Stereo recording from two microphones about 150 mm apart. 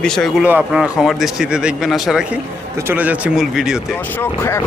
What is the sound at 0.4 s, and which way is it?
A man's voice, 5° right (ahead or behind).